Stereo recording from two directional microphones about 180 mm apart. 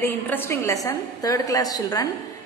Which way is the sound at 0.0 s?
15° left (ahead or behind).